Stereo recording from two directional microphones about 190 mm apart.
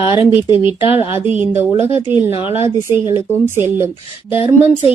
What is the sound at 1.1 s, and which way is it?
Speech, 10° right (ahead or behind).